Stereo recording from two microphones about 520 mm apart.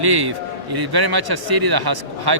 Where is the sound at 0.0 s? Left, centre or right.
Right.